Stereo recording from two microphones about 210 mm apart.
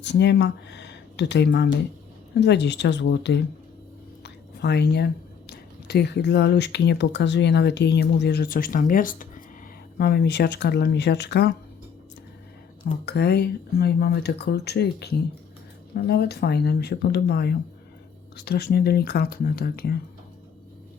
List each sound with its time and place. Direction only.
0.0 s speech: 55° left (ahead or behind)
4.2 s whispering: 50° left (ahead or behind)
5.5 s speech: 50° left (ahead or behind)
10.0 s speech: 50° left (ahead or behind)
12.8 s speech: 50° left (ahead or behind)